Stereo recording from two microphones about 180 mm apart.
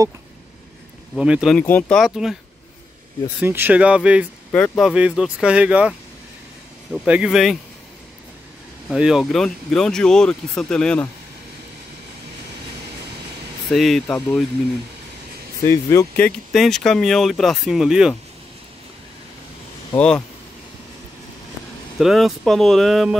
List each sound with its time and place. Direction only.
1.1 s speech: 5° right (ahead or behind)
3.3 s speech: 10° right (ahead or behind)
4.5 s speech: 5° left (ahead or behind)
7.1 s speech: 5° right (ahead or behind)
8.8 s speech: 5° right (ahead or behind)
13.7 s speech: centre (ahead or behind)
15.6 s speech: 15° left (ahead or behind)
16.5 s speech: centre (ahead or behind)
20.0 s speech: 5° left (ahead or behind)
21.9 s speech: centre (ahead or behind)